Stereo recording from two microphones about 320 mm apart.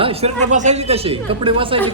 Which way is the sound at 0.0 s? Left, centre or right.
Centre.